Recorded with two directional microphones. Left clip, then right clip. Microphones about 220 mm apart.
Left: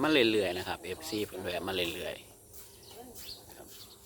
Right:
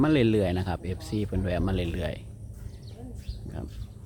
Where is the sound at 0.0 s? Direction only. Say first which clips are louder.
Right 3 dB; 5° right (ahead or behind).